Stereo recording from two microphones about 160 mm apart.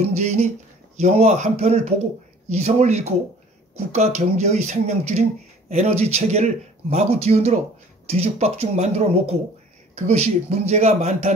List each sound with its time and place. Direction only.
0.0 s speech: 45° right (ahead or behind)